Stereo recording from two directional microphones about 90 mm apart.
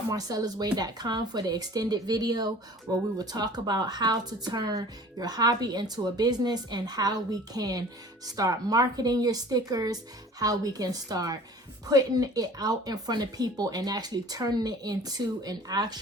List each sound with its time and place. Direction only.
0.1 s speech: 45° right (ahead or behind)